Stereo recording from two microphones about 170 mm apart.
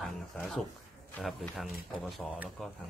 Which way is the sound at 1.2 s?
Centre (ahead or behind).